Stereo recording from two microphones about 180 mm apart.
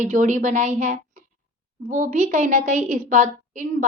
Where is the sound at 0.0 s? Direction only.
45° right (ahead or behind).